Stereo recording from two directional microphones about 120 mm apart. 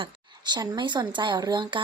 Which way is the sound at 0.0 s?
40° right (ahead or behind).